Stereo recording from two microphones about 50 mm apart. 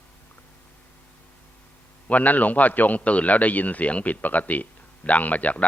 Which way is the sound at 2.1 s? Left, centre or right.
Left.